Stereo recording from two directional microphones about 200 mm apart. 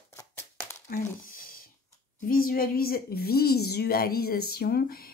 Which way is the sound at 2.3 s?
45° left (ahead or behind).